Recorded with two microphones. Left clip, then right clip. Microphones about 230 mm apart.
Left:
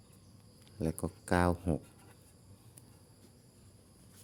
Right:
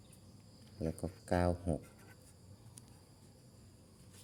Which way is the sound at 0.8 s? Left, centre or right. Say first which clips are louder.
Left 4 dB; left.